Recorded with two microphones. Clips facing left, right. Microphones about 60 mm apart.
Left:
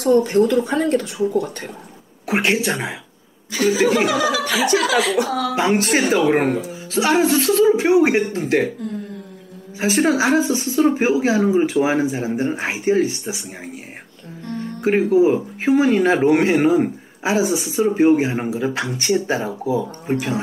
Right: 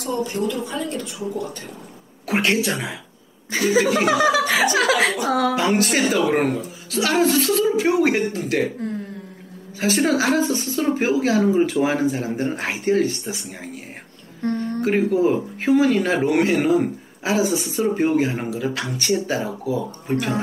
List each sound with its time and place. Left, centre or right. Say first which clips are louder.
0.0 s speech: left 9 dB; left
2.2 s speech: left 1 dB; centre
4.0 s speech: right 1 dB; right
5.6 s speech: left 2 dB; left
6.9 s speech: left 2 dB; left
7.3 s speech: left 4 dB; left
9.8 s a woman's voice: left 2 dB; centre
14.4 s music: right 5 dB; right
14.8 s speech: left 3 dB; left
15.0 s a woman's voice: left 4 dB; centre
15.7 s a woman's voice: left 2 dB; left